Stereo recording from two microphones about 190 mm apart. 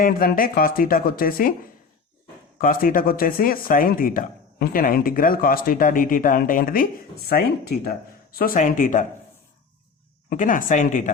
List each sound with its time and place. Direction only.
0.0 s speech: 50° left (ahead or behind)
2.6 s speech: 45° left (ahead or behind)
10.2 s speech: 45° left (ahead or behind)